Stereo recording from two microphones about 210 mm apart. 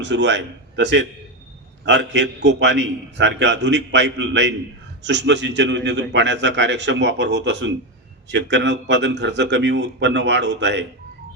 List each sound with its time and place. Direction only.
0.0 s a man's voice: 60° right (ahead or behind)